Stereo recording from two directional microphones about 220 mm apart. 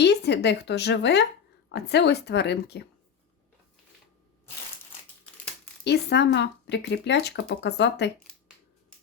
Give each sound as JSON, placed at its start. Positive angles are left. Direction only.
{"t": 0.0, "sound": "speech", "side_deg": 50}
{"t": 5.8, "sound": "speech", "side_deg": 50}